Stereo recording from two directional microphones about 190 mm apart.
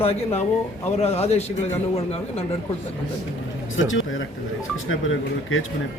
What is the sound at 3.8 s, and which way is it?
Speech, 80° left.